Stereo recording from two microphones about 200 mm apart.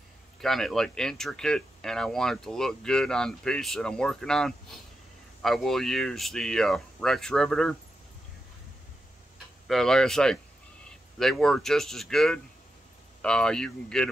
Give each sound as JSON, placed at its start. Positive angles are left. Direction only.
{"t": 0.4, "sound": "speech", "side_deg": 0}
{"t": 9.7, "sound": "speech", "side_deg": 0}